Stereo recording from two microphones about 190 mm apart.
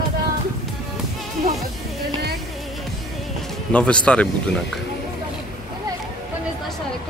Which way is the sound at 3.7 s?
5° left (ahead or behind).